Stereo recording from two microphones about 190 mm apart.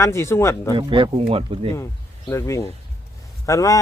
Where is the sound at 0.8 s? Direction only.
25° right (ahead or behind).